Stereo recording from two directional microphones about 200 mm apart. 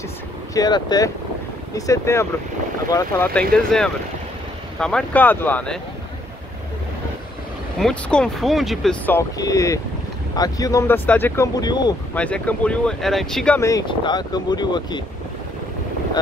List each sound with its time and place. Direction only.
0.6 s speech: 20° left (ahead or behind)
3.3 s speech: 5° left (ahead or behind)
7.8 s speech: 5° left (ahead or behind); by 11.9 s 20° left (ahead or behind)
12.1 s speech: 5° left (ahead or behind)
13.6 s speech: 15° left (ahead or behind)